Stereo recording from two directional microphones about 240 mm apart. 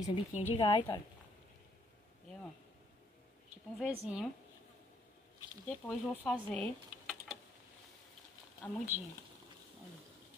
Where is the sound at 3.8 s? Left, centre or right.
Centre.